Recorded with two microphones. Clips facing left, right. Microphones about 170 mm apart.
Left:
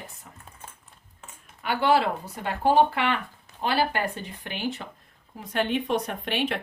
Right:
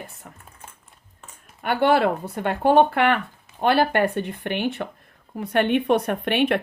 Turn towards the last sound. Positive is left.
turn(degrees=-60)  # may be behind; listen again after turning